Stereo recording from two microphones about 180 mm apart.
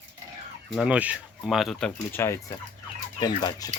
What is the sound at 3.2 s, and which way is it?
Fowl, 20° left (ahead or behind).